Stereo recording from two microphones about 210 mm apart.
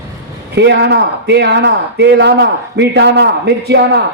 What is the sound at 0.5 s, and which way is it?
A man's voice, 55° right (ahead or behind).